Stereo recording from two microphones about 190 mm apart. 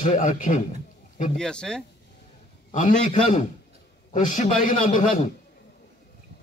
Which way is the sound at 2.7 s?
40° left (ahead or behind).